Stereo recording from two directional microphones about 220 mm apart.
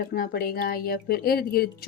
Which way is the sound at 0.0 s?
45° left (ahead or behind).